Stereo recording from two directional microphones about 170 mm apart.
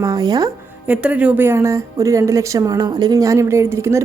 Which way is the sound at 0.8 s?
10° right (ahead or behind).